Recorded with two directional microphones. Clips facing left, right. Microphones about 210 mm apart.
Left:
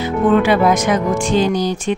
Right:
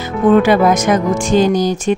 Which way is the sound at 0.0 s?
45° right (ahead or behind).